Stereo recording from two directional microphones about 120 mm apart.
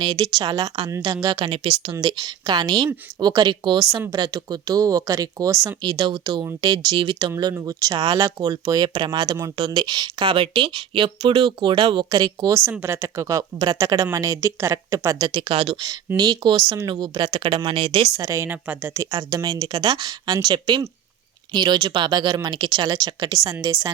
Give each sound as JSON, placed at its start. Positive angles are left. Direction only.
{"t": 0.0, "sound": "speech", "side_deg": -35}
{"t": 1.4, "sound": "speech", "side_deg": -50}
{"t": 2.0, "sound": "speech", "side_deg": -35}
{"t": 12.8, "sound": "speech", "side_deg": -20}
{"t": 15.4, "sound": "speech", "side_deg": -50}
{"t": 16.1, "sound": "speech", "side_deg": -35}
{"t": 18.2, "sound": "speech", "side_deg": -25}
{"t": 19.1, "sound": "speech", "side_deg": -35}